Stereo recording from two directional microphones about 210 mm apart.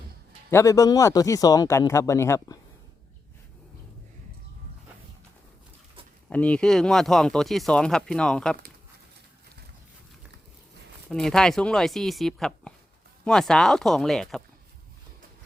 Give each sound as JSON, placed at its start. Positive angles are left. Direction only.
{"t": 0.5, "sound": "speech", "side_deg": 15}
{"t": 6.3, "sound": "speech", "side_deg": 5}
{"t": 11.1, "sound": "speech", "side_deg": 5}